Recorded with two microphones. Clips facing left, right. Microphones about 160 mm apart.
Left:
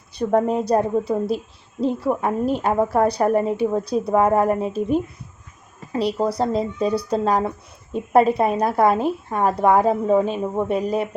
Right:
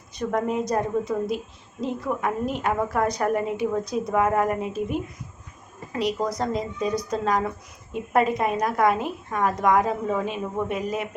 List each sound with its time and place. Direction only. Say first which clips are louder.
0.2 s a woman's voice: left 6 dB; 30° left (ahead or behind)